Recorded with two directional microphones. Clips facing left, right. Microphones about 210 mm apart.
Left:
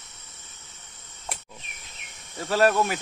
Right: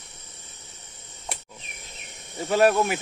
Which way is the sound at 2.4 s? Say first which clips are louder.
Right 2 dB; 15° right (ahead or behind).